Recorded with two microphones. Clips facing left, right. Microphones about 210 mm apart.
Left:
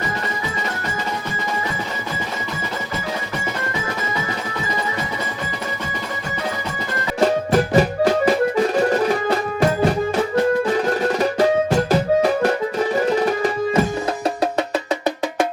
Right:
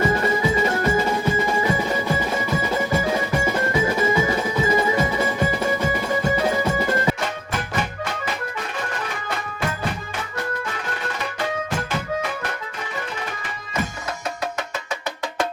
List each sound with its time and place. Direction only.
7.2 s music: 35° left (ahead or behind)
10.8 s music: 40° left (ahead or behind)
13.1 s tabla: 40° left (ahead or behind)